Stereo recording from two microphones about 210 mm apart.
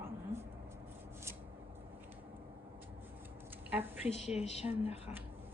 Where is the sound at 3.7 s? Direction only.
10° right (ahead or behind).